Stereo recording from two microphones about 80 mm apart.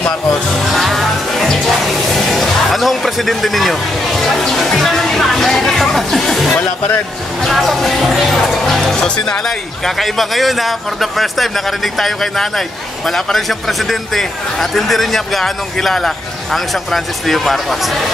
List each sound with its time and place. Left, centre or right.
0.7 s music: centre
7.4 s a man's voice: centre